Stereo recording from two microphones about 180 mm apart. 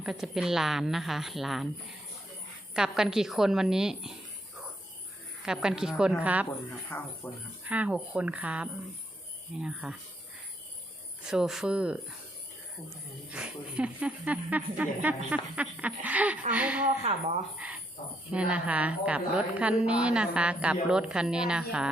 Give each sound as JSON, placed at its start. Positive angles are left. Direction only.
{"t": 0.0, "sound": "a woman's voice", "side_deg": 0}
{"t": 2.7, "sound": "a woman's voice", "side_deg": -5}
{"t": 5.5, "sound": "a woman's voice", "side_deg": -5}
{"t": 6.9, "sound": "speech", "side_deg": 10}
{"t": 7.6, "sound": "a woman's voice", "side_deg": -10}
{"t": 11.2, "sound": "a woman's voice", "side_deg": -5}
{"t": 13.2, "sound": "a woman's voice", "side_deg": -5}
{"t": 17.0, "sound": "speech", "side_deg": -40}
{"t": 18.3, "sound": "a woman's voice", "side_deg": -5}